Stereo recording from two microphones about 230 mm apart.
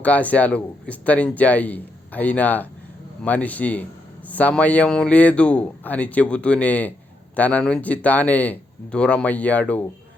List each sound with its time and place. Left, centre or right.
0.0 s speech: centre